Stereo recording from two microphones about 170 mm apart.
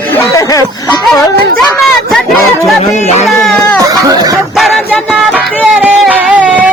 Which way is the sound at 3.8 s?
20° right (ahead or behind).